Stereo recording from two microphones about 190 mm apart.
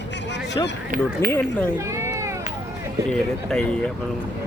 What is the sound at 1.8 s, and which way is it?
Cat, 15° right (ahead or behind).